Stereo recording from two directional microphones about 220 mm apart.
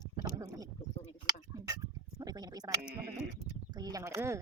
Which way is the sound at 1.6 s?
15° right (ahead or behind).